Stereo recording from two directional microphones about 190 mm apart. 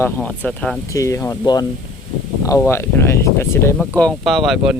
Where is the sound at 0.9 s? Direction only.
15° left (ahead or behind); by 4.7 s centre (ahead or behind).